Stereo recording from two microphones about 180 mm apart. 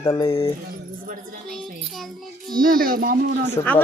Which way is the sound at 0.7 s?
50° right (ahead or behind).